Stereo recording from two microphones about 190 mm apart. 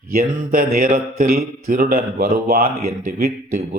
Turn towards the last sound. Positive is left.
turn(degrees=-50)  # may be behind; listen again after turning